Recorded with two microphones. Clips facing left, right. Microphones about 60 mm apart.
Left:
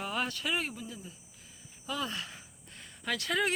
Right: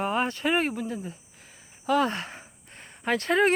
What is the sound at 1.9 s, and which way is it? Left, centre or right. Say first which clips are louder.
Speech: right 12 dB; right.